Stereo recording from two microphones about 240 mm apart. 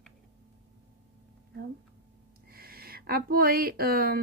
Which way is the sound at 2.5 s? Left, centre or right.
Right.